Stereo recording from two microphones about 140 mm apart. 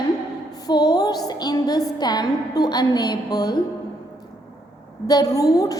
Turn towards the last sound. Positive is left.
turn(degrees=25)  # may be behind; listen again after turning